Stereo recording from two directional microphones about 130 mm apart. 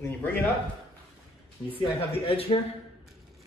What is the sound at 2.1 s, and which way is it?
Speech, 45° left (ahead or behind).